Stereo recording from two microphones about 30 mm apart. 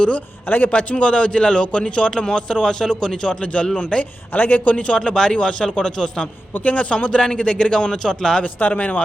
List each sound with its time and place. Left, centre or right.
0.4 s speech: left
0.7 s a man's voice: left
1.0 s a man's voice: left
3.4 s a man's voice: left
3.9 s a man's voice: left
4.3 s speech: left
4.6 s a man's voice: left
4.9 s a man's voice: left
6.7 s a man's voice: left
7.1 s a man's voice: left
8.7 s a man's voice: left